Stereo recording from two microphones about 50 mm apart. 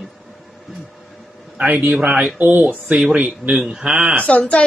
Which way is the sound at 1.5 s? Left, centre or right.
Right.